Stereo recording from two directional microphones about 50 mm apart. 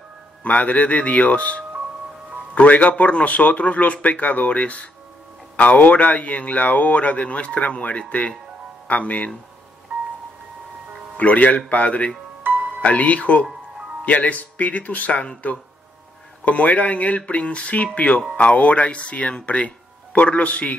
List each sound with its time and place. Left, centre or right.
0.4 s a man's voice: left
11.1 s a man's voice: left
12.4 s music: right
12.8 s a man's voice: left